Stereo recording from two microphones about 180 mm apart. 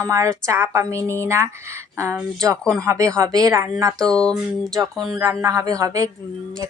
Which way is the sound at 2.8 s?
15° right (ahead or behind).